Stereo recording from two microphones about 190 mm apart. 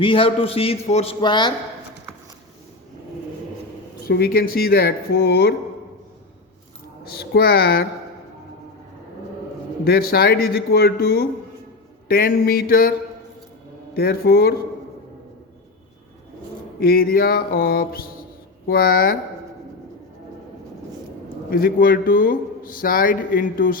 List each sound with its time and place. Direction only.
0.0 s a man's voice: 30° left (ahead or behind)
1.2 s speech: 25° left (ahead or behind)
4.1 s speech: 55° left (ahead or behind)
7.2 s speech: 55° left (ahead or behind)
9.8 s speech: 50° left (ahead or behind)
13.9 s speech: 55° left (ahead or behind)
16.8 s speech: 50° left (ahead or behind)
21.5 s speech: 50° left (ahead or behind)